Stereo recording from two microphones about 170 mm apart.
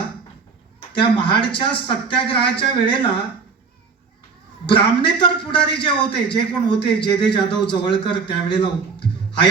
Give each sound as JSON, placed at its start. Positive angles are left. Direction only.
{"t": 0.9, "sound": "a man's voice", "side_deg": 30}
{"t": 4.6, "sound": "a man's voice", "side_deg": 30}